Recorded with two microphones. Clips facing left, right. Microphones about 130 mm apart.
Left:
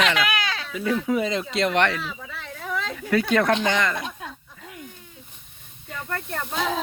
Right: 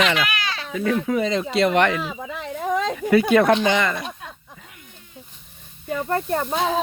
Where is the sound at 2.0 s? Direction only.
40° right (ahead or behind).